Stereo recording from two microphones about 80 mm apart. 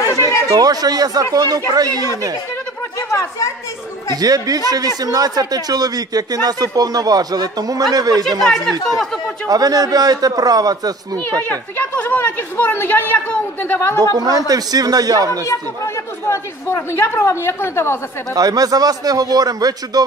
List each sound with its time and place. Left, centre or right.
0.0 s chatter: left
0.5 s speech: right
3.1 s speech: left
4.1 s speech: right
8.5 s speech: centre
9.5 s speech: right
11.4 s speech: centre
14.1 s speech: right
15.4 s speech: left
18.3 s speech: right